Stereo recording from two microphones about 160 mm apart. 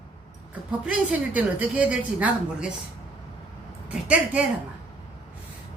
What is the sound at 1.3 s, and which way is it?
Speech, 10° right (ahead or behind).